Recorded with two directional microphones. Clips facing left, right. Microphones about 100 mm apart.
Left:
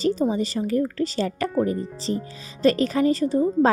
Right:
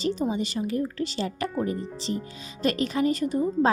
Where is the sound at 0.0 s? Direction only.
35° left (ahead or behind).